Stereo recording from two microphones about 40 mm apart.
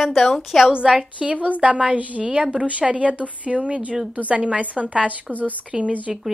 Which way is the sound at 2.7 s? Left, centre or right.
Right.